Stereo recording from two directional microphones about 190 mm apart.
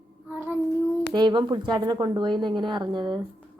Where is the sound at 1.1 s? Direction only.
25° right (ahead or behind).